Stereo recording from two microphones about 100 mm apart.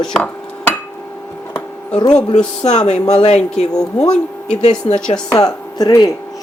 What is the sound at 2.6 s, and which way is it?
Speech, 90° left.